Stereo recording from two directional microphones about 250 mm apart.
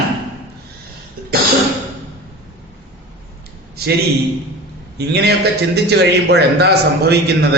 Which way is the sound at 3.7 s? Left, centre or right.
Right.